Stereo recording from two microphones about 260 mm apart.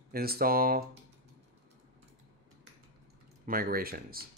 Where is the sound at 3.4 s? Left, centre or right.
Right.